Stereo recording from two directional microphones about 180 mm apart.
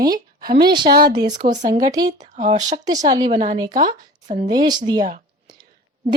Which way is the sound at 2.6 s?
20° right (ahead or behind).